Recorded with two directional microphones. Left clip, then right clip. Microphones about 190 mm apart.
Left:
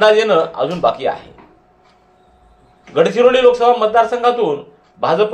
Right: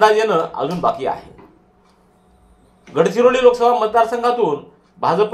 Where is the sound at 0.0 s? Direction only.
35° right (ahead or behind).